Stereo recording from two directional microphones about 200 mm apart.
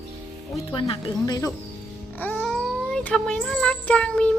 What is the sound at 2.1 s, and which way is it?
Child singing, 5° left (ahead or behind).